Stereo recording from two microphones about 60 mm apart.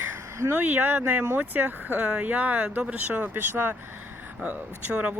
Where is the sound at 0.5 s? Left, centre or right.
Right.